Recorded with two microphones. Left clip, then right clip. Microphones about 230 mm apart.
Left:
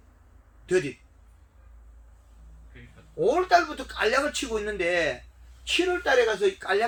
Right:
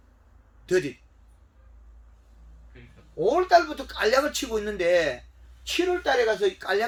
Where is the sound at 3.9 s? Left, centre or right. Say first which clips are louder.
Right 2 dB; right.